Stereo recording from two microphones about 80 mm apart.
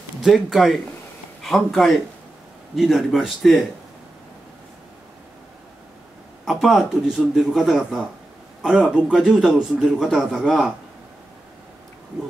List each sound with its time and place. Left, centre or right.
0.2 s a man's voice: centre
6.4 s a man's voice: centre